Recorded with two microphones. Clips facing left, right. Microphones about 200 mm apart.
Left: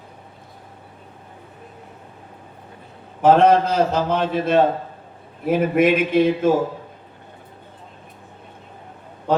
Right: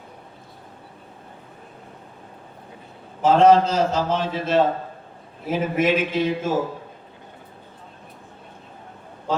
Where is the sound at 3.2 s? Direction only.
60° left (ahead or behind).